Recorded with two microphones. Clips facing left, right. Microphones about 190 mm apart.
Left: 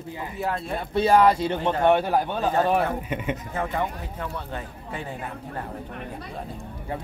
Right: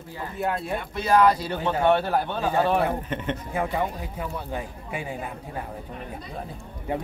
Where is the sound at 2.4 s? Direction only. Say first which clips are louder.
Right 1 dB; 10° right (ahead or behind).